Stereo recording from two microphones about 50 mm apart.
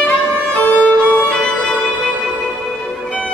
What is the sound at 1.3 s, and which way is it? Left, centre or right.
Violin, centre.